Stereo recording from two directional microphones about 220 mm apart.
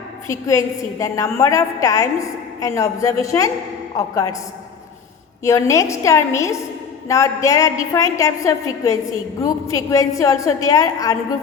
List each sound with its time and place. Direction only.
0.3 s a woman's voice: 15° left (ahead or behind)
5.4 s a woman's voice: 15° left (ahead or behind)